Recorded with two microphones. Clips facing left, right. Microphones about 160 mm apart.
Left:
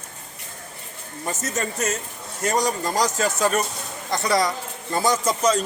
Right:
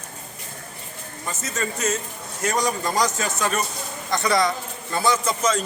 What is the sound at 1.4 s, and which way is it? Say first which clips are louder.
A man's voice: right 1 dB; 45° left (ahead or behind).